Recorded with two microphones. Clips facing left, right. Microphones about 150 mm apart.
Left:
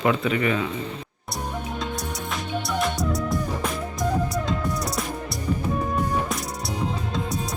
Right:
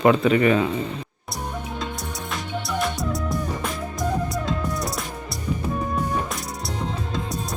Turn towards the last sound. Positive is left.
turn(degrees=0)  # may be behind; listen again after turning